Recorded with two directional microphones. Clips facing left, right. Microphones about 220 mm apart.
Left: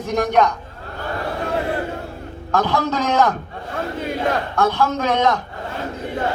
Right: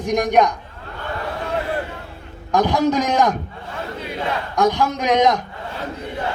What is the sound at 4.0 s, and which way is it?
Speech, 50° left (ahead or behind).